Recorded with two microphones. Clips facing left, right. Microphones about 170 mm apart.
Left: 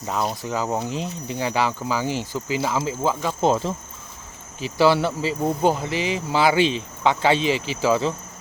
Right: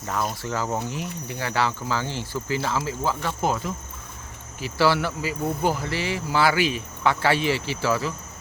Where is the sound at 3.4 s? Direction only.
30° left (ahead or behind).